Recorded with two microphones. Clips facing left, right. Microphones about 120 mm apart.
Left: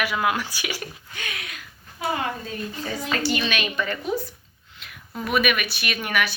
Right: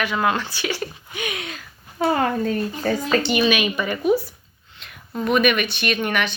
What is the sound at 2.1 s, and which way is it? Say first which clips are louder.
Speech: right 8 dB; 50° right (ahead or behind).